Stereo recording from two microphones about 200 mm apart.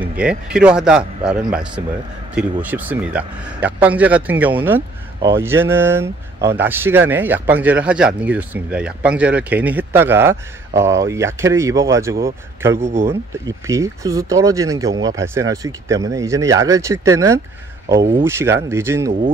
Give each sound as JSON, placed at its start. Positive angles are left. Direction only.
{"t": 0.2, "sound": "speech", "side_deg": -5}